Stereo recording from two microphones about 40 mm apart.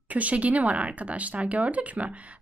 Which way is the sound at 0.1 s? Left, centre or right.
Right.